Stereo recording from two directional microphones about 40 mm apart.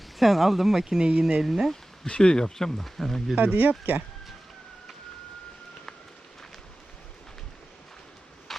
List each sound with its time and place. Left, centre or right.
0.2 s speech: centre
0.9 s speech: centre
2.0 s speech: left
3.3 s speech: right
8.5 s a sound: centre